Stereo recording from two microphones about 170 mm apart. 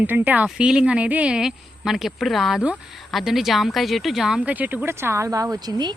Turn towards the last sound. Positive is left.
turn(degrees=-25)  # may be behind; listen again after turning